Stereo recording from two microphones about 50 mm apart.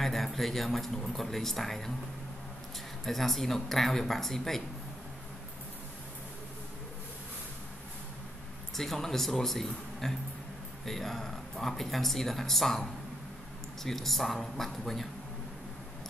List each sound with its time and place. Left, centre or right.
0.0 s speech: centre
3.1 s speech: centre
8.7 s speech: centre
13.8 s speech: centre